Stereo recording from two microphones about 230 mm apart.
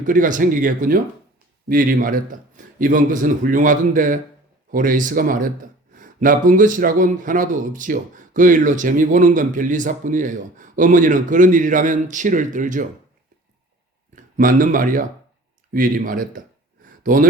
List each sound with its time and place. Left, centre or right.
0.0 s speech: right
14.3 s speech: right
16.8 s a sound: right